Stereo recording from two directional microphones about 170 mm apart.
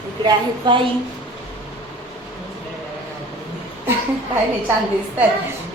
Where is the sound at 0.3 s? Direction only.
25° right (ahead or behind).